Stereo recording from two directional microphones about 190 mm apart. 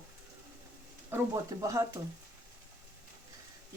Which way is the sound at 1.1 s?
10° right (ahead or behind).